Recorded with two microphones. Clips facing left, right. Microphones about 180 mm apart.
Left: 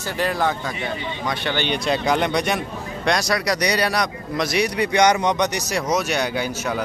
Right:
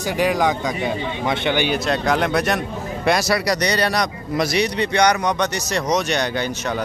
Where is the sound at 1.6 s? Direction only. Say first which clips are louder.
Right 2 dB; centre (ahead or behind).